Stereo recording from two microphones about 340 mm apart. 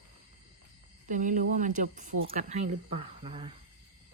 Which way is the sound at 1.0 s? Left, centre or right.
Right.